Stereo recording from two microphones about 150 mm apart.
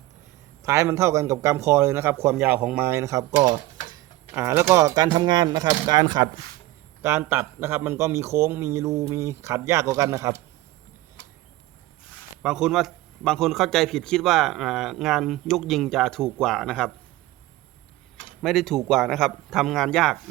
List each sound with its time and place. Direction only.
0.6 s a man's voice: 20° right (ahead or behind)
3.4 s a sound: 30° right (ahead or behind)
4.3 s a man's voice: 20° right (ahead or behind)
7.0 s a man's voice: 15° right (ahead or behind)
12.4 s a man's voice: 5° right (ahead or behind)
18.4 s a man's voice: centre (ahead or behind)